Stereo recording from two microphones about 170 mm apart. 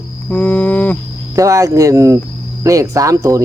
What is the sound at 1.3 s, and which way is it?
Speech, 20° right (ahead or behind).